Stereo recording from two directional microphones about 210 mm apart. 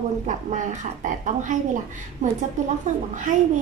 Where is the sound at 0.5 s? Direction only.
35° right (ahead or behind).